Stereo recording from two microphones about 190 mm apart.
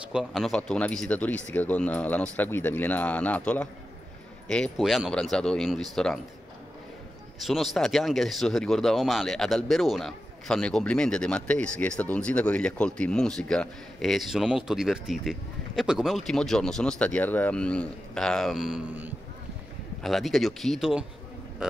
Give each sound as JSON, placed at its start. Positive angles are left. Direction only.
{"t": 0.1, "sound": "a man's voice", "side_deg": 0}
{"t": 7.3, "sound": "a man's voice", "side_deg": 0}